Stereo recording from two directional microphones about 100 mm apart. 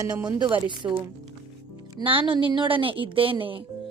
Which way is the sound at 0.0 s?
40° right (ahead or behind).